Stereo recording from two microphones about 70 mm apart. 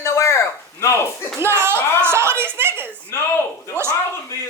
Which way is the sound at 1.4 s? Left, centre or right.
Right.